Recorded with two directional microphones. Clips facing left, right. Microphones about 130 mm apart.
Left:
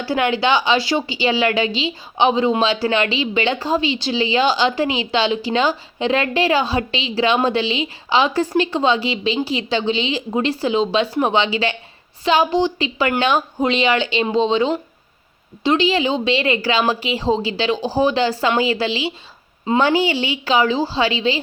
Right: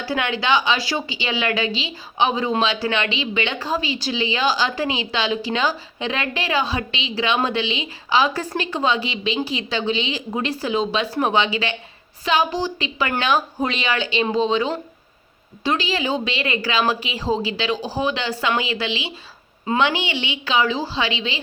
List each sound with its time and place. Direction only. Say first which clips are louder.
0.0 s a woman's voice: left 5 dB; 30° left (ahead or behind)